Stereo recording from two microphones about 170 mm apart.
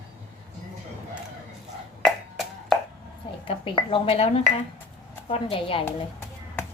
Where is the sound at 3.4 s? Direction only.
30° left (ahead or behind).